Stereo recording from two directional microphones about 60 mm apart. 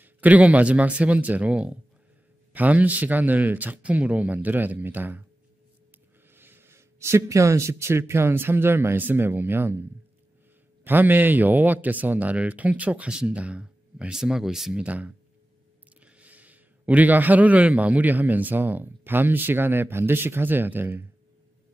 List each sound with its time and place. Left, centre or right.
0.0 s speech: right
6.3 s a man's voice: right; by 14.8 s centre
14.8 s a man's voice: right